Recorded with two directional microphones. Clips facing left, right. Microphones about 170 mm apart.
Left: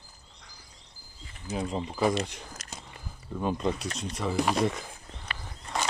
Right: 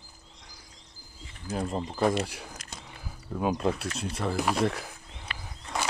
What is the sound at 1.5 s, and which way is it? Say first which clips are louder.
Speech: even; centre (ahead or behind).